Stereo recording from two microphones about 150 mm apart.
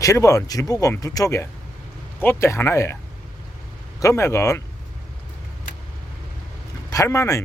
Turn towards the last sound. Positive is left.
turn(degrees=20)  # may be behind; listen again after turning